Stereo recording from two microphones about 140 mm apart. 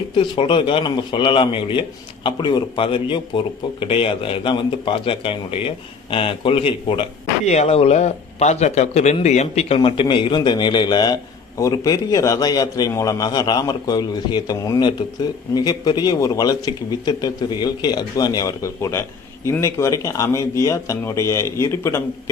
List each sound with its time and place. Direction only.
0.2 s speech: 35° left (ahead or behind)
7.4 s speech: 50° left (ahead or behind); by 22.0 s 20° left (ahead or behind)